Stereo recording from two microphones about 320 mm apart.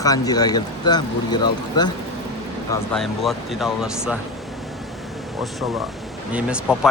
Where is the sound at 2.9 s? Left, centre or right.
Centre.